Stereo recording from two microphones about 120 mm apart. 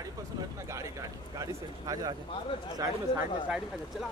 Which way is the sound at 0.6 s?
25° right (ahead or behind).